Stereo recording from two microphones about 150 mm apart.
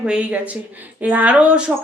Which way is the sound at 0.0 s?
10° right (ahead or behind).